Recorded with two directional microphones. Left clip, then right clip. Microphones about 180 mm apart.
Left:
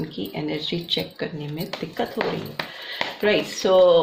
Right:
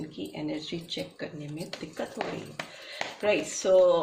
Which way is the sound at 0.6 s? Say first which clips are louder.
Left 10 dB; 35° left (ahead or behind).